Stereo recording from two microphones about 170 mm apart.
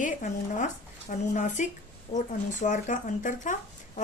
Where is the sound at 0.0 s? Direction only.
50° left (ahead or behind).